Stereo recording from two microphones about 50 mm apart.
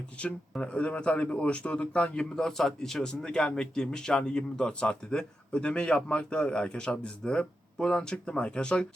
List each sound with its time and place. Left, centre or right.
0.2 s speech: left
2.3 s a man's voice: centre